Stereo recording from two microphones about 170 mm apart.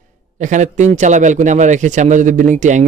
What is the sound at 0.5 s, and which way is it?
A man's voice, 45° right (ahead or behind).